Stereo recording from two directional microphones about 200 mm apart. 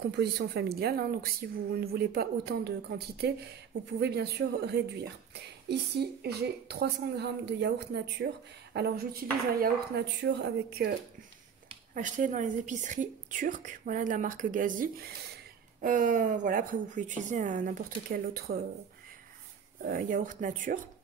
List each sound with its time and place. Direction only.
0.1 s a woman's voice: 55° right (ahead or behind)
11.9 s a woman's voice: 40° right (ahead or behind)
19.8 s a woman's voice: 45° right (ahead or behind)